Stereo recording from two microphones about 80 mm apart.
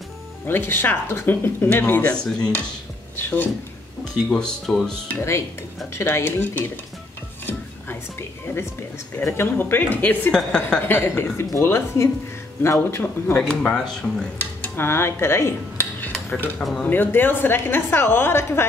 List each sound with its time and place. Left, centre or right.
0.5 s a woman's voice: left
3.2 s a woman's voice: left
4.0 s speech: centre
5.9 s speech: left
7.4 s music: left
9.2 s a woman's voice: left
10.3 s speech: centre
10.9 s a woman's voice: left
13.4 s speech: centre
14.4 s a woman's voice: left